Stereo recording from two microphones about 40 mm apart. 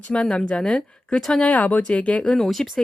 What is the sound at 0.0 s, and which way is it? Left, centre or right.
Speech, left.